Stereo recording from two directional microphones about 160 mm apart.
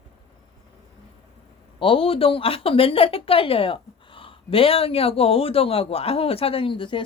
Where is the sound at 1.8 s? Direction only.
35° left (ahead or behind).